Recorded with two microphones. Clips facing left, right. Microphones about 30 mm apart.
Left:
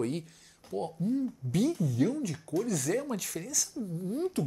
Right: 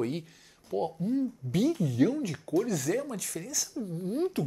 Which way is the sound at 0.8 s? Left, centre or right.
Centre.